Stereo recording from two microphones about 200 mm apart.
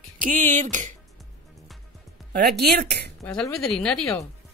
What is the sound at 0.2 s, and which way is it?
Speech, 40° right (ahead or behind).